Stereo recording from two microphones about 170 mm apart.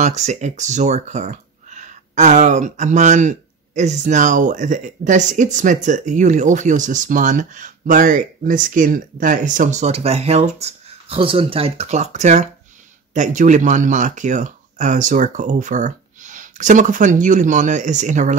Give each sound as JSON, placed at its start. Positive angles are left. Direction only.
{"t": 0.0, "sound": "speech", "side_deg": -40}